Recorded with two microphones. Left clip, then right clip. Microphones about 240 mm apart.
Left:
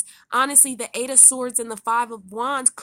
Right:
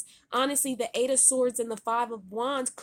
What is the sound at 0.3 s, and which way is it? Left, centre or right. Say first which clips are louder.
Speech: left 7 dB; left.